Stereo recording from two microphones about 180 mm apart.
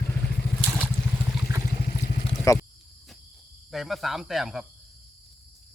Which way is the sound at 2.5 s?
20° left (ahead or behind).